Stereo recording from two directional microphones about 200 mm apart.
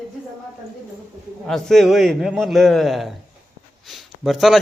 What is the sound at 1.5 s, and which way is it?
A man's voice, centre (ahead or behind).